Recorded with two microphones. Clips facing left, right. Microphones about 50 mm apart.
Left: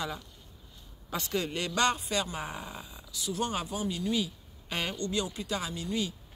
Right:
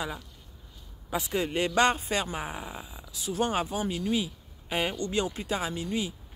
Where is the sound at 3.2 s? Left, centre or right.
Right; by 5.1 s centre.